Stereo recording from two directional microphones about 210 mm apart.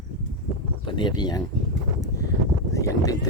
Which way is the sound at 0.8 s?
20° left (ahead or behind).